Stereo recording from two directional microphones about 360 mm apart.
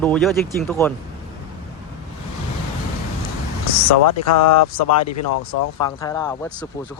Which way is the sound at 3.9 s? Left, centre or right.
Left.